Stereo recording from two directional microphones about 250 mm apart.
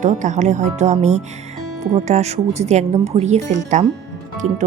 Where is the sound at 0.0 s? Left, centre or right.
Right.